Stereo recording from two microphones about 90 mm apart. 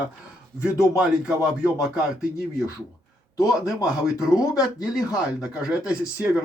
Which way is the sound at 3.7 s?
40° left (ahead or behind).